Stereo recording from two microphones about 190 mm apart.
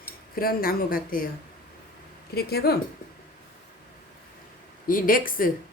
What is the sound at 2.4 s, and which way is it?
Speech, 55° left (ahead or behind).